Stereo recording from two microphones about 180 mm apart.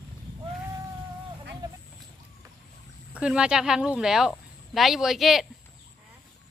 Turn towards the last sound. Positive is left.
turn(degrees=0)  # may be behind; listen again after turning